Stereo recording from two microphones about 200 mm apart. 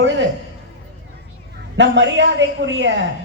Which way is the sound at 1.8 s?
65° right (ahead or behind).